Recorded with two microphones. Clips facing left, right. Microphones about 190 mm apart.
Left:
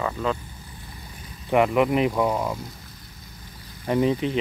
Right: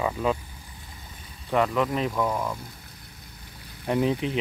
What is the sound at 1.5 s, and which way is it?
Speech, 15° left (ahead or behind).